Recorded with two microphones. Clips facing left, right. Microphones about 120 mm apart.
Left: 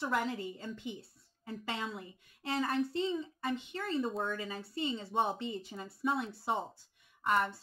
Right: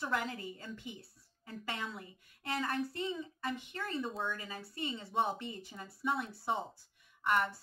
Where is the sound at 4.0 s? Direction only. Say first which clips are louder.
Left 3 dB; centre (ahead or behind).